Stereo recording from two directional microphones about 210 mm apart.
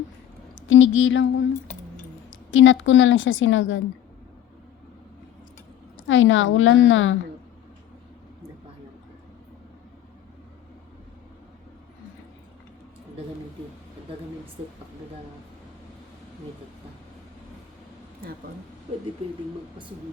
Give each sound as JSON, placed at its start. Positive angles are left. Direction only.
{"t": 0.7, "sound": "a woman's voice", "side_deg": 65}
{"t": 2.5, "sound": "a woman's voice", "side_deg": 65}
{"t": 6.1, "sound": "a woman's voice", "side_deg": 65}